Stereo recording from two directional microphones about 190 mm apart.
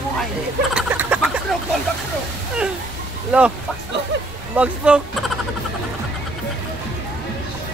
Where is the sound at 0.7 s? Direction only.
5° right (ahead or behind).